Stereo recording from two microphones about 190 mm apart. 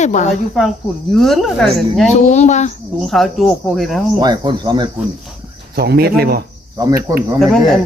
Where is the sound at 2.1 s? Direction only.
35° left (ahead or behind).